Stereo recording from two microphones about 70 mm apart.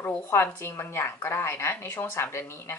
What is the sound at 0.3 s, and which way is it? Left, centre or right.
A woman's voice, left.